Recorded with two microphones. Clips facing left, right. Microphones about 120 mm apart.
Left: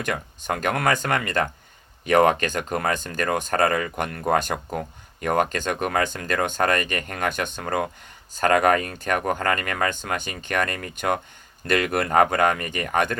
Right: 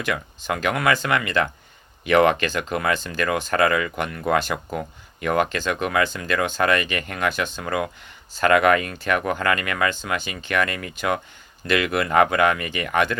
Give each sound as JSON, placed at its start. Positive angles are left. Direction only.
{"t": 0.0, "sound": "speech", "side_deg": 45}